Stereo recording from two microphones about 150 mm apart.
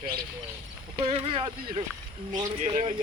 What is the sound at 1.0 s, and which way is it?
Speech, 40° right (ahead or behind).